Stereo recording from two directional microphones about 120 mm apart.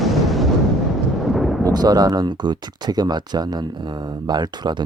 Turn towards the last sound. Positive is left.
turn(degrees=-35)  # may be behind; listen again after turning